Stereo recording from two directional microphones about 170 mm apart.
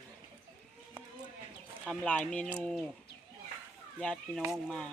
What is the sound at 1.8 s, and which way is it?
Speech, 5° left (ahead or behind).